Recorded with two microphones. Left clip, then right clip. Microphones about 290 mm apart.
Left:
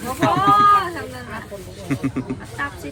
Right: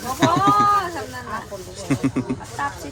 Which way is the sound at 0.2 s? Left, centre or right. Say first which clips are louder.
Left 2 dB; centre.